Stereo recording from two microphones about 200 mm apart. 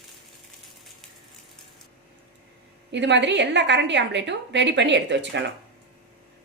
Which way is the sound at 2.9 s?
60° right (ahead or behind).